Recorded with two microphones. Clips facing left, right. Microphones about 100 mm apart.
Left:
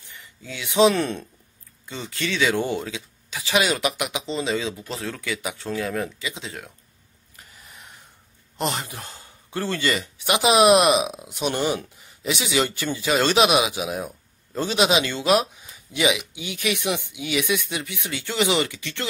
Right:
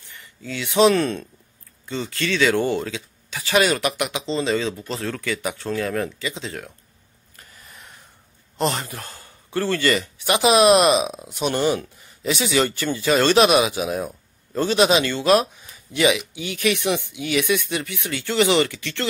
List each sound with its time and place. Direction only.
0.4 s speech: 10° left (ahead or behind)
8.5 s speech: 15° left (ahead or behind)